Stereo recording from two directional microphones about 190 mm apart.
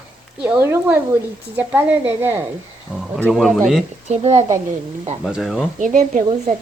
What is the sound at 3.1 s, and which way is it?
Speech, centre (ahead or behind).